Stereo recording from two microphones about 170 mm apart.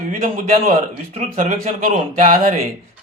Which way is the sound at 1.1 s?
40° right (ahead or behind).